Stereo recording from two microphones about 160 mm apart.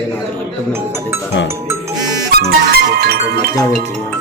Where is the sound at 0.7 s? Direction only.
15° right (ahead or behind).